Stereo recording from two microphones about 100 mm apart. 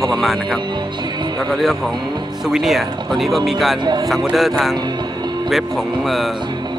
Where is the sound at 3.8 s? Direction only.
45° right (ahead or behind).